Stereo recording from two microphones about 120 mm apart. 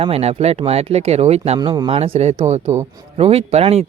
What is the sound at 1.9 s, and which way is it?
Speech, 60° right (ahead or behind).